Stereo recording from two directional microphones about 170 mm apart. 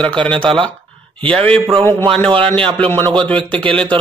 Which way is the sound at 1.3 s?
10° left (ahead or behind).